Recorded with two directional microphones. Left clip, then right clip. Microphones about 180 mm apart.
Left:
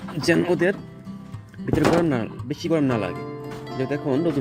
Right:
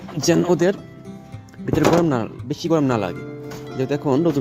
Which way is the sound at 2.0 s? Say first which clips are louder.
Right 3 dB; 15° right (ahead or behind).